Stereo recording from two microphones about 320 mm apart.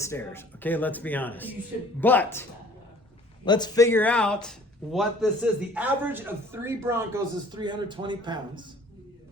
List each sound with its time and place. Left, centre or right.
0.0 s a man's voice: centre